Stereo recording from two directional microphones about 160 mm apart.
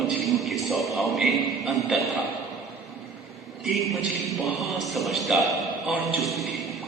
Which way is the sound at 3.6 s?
Centre (ahead or behind).